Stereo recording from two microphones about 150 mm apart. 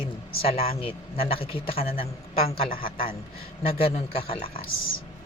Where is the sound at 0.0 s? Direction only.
40° left (ahead or behind).